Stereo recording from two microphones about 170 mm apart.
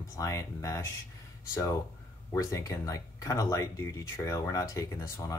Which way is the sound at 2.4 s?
20° left (ahead or behind).